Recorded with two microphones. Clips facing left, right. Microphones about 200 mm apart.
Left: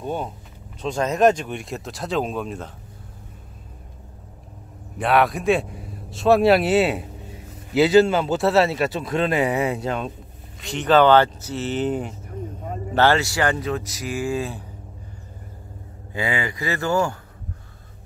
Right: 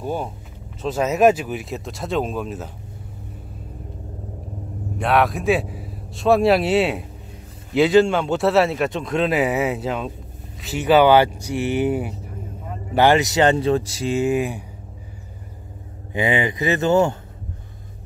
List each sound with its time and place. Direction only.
0.0 s speech: 5° right (ahead or behind)
4.9 s speech: centre (ahead or behind); by 14.6 s 20° right (ahead or behind)
16.1 s speech: 20° right (ahead or behind)